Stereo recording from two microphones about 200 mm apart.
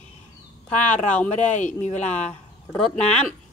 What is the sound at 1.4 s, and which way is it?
Speech, 35° left (ahead or behind).